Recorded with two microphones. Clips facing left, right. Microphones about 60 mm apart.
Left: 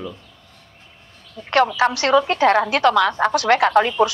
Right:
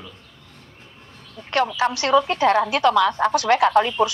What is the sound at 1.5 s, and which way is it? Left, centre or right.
A woman's voice, left.